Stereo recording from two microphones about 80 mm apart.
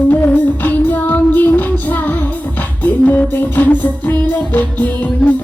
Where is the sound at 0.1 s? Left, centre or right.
Left.